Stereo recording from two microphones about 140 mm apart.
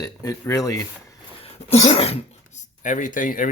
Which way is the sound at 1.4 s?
45° left (ahead or behind).